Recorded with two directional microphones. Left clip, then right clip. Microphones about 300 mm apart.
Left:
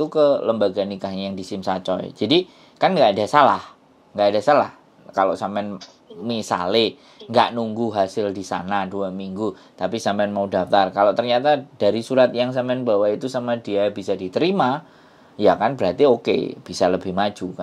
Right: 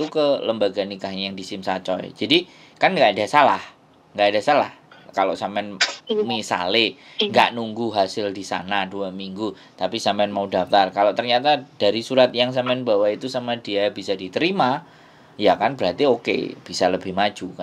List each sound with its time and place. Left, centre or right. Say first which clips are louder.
0.0 s speech: left 3 dB; left